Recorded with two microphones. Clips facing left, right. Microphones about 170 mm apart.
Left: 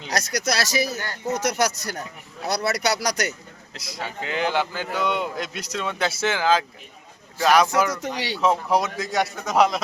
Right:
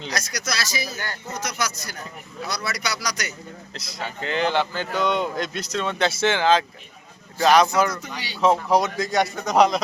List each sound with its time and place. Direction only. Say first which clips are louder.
0.1 s a man's voice: left 6 dB; 60° left (ahead or behind)
3.8 s speech: left 1 dB; 10° left (ahead or behind)
7.9 s speech: left 4 dB; 85° left
8.4 s a man's voice: right 3 dB; 5° left (ahead or behind)